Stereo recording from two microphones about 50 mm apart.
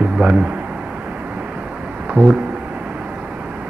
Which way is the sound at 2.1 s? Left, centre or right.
Right.